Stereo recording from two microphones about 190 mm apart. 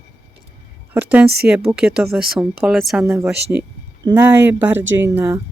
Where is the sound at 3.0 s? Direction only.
15° right (ahead or behind).